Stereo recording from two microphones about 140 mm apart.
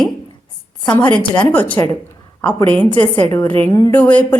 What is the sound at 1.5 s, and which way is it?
A woman's voice, 10° left (ahead or behind).